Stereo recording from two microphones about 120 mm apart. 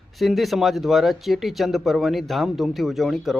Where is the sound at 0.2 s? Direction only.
Centre (ahead or behind).